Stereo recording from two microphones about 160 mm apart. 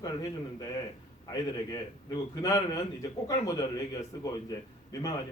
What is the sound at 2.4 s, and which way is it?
Speech, 20° left (ahead or behind).